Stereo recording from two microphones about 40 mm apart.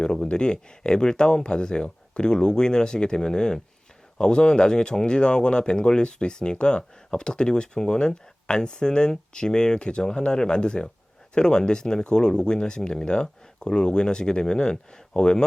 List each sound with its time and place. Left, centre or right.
0.0 s speech: centre